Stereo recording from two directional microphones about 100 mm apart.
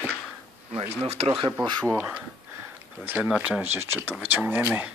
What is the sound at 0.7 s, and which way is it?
Speech, 85° right.